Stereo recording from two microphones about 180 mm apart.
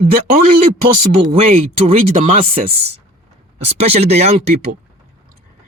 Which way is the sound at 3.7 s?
35° right (ahead or behind).